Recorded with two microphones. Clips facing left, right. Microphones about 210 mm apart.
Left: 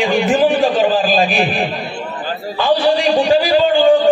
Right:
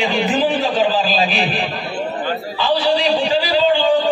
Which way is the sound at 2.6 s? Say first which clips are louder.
Left 4 dB; 50° left (ahead or behind).